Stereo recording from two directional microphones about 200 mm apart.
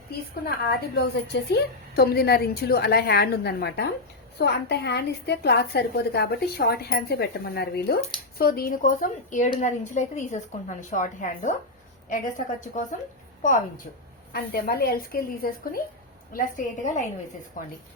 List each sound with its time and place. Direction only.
0.4 s a woman's voice: 55° left (ahead or behind); by 17.1 s 40° left (ahead or behind)